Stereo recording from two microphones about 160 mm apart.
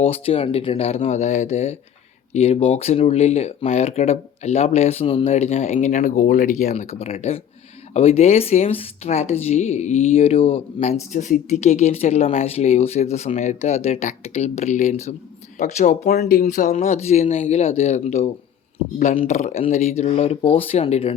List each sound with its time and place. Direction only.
0.0 s speech: 35° left (ahead or behind)
19.3 s speech: 45° left (ahead or behind)